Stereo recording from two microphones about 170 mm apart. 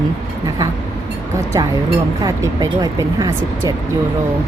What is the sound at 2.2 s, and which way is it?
Speech, 20° right (ahead or behind).